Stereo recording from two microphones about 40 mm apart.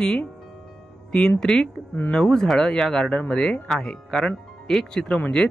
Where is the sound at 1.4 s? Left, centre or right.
Centre.